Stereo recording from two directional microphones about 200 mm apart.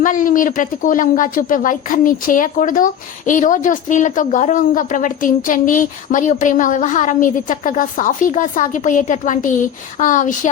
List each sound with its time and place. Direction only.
0.0 s speech: 40° left (ahead or behind)